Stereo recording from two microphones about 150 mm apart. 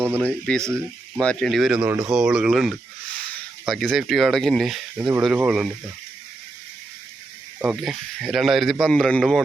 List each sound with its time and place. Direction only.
0.2 s speech: 5° left (ahead or behind)
4.9 s speech: 10° right (ahead or behind)
7.6 s speech: 5° right (ahead or behind)